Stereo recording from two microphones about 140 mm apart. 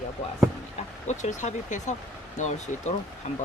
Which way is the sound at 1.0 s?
60° left (ahead or behind).